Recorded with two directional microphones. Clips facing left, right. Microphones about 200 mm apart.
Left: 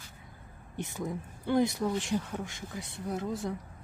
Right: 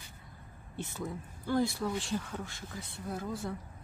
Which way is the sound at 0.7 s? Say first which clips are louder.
Left 3 dB; 15° left (ahead or behind).